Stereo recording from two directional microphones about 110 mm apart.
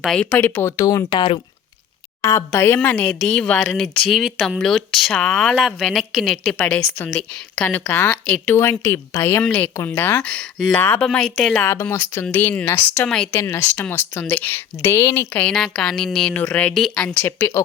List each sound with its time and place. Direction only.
0.1 s speech: 5° left (ahead or behind)
0.3 s speech: 20° left (ahead or behind)
0.8 s speech: 30° left (ahead or behind)
2.2 s speech: 25° left (ahead or behind)
3.7 s speech: centre (ahead or behind); by 9.4 s 20° left (ahead or behind)
9.4 s speech: 10° left (ahead or behind)
11.0 s speech: 5° left (ahead or behind)
11.5 s speech: 25° left (ahead or behind); by 17.2 s 5° left (ahead or behind)
17.2 s speech: 20° left (ahead or behind)